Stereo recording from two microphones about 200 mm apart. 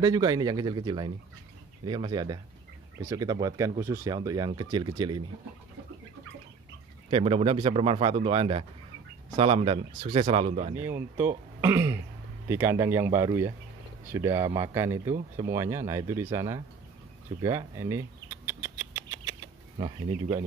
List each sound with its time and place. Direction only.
0.0 s speech: 20° right (ahead or behind)
7.1 s speech: 30° right (ahead or behind)
10.7 s speech: 10° right (ahead or behind)
17.4 s a sound: 15° right (ahead or behind)
20.1 s speech: 35° right (ahead or behind)